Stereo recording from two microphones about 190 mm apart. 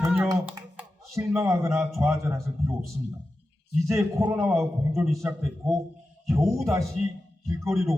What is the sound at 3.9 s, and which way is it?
A man's voice, 15° right (ahead or behind).